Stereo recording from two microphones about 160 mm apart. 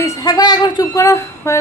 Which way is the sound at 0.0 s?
25° left (ahead or behind).